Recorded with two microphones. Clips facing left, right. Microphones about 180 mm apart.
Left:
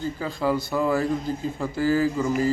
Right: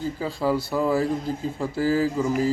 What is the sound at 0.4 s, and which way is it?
A man's voice, 5° right (ahead or behind).